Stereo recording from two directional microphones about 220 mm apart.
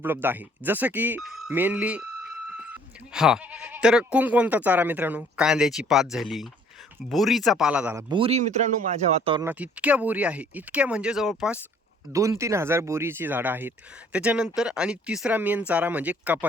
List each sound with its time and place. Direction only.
0.0 s speech: 10° right (ahead or behind)
8.1 s speech: 25° right (ahead or behind)
9.4 s speech: 10° right (ahead or behind)
12.1 s speech: 15° right (ahead or behind)